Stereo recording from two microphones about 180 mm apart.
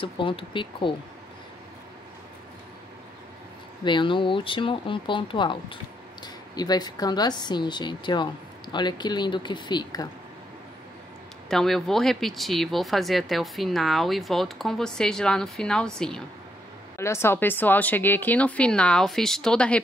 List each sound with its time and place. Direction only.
0.0 s speech: 30° left (ahead or behind)
3.8 s speech: 25° left (ahead or behind)
11.4 s speech: centre (ahead or behind)
17.0 s speech: 15° left (ahead or behind)